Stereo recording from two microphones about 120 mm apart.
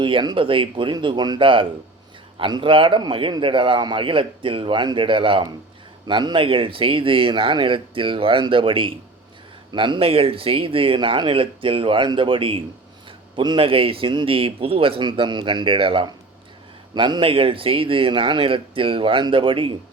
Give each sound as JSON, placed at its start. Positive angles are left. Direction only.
{"t": 0.0, "sound": "a man's voice", "side_deg": -40}